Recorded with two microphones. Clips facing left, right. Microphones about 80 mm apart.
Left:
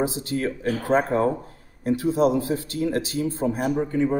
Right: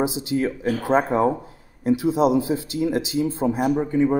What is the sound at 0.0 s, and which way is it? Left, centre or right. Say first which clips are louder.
Speech: right 3 dB; centre.